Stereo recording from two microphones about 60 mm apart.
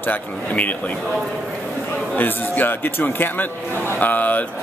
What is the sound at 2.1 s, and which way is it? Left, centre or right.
A man's voice, left.